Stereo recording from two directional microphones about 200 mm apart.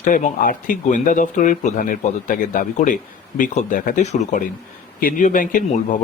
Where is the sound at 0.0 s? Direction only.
40° left (ahead or behind).